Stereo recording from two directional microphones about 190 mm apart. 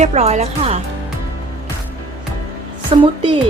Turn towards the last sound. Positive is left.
turn(degrees=-25)  # may be behind; listen again after turning